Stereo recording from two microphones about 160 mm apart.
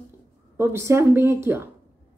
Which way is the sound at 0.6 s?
15° right (ahead or behind).